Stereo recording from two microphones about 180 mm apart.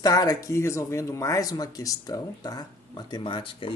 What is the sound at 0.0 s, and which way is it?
A man's voice, 20° left (ahead or behind).